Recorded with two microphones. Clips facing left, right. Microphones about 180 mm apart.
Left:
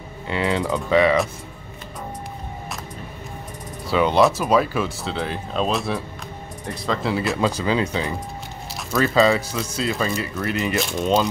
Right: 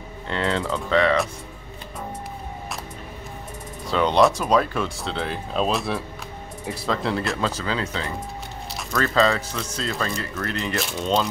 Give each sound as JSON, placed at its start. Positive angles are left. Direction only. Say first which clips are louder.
{"t": 0.3, "sound": "speech", "louder": "left 2 dB", "side_deg": 10}
{"t": 3.8, "sound": "speech", "louder": "left 1 dB", "side_deg": 5}
{"t": 7.3, "sound": "speech", "louder": "left 5 dB", "side_deg": 15}